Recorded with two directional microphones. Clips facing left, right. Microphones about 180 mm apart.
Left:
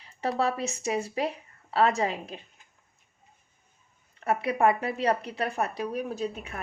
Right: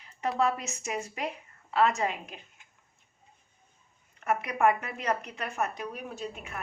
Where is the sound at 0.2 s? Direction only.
35° left (ahead or behind).